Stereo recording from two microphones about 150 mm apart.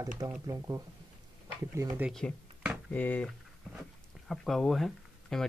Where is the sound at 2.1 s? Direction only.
Centre (ahead or behind).